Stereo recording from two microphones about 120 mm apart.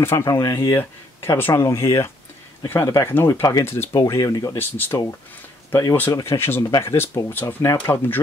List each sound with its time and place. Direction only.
0.0 s speech: 20° left (ahead or behind)
3.2 s speech: 20° left (ahead or behind)
4.6 s speech: 20° left (ahead or behind)